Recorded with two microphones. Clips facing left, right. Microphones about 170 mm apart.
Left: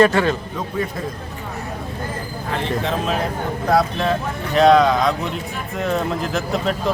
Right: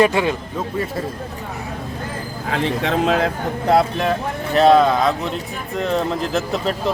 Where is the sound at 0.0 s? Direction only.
15° right (ahead or behind).